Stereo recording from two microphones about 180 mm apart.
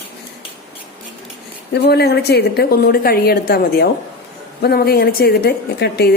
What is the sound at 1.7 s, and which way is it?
A woman's voice, 65° left (ahead or behind).